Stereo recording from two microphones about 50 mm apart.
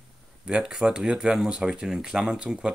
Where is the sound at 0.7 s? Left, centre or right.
Centre.